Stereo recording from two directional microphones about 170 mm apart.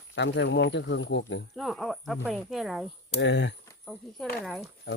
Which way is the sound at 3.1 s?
90° left.